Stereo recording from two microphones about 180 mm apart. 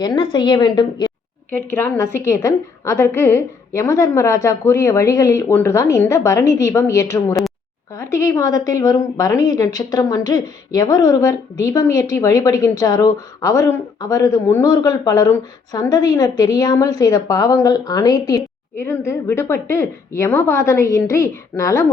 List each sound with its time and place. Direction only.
0.0 s a woman's voice: 25° left (ahead or behind)
1.5 s a woman's voice: 10° left (ahead or behind)